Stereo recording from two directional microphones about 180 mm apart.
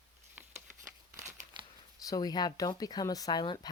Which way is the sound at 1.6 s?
25° right (ahead or behind).